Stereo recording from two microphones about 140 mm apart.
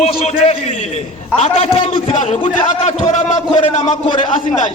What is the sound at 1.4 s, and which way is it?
A man's voice, 45° left (ahead or behind).